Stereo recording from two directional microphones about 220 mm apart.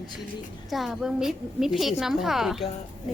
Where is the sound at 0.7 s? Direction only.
Centre (ahead or behind).